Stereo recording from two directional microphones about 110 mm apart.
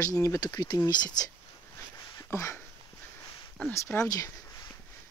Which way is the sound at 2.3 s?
25° left (ahead or behind).